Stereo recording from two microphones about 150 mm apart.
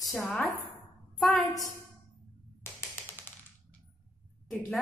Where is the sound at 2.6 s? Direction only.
15° left (ahead or behind).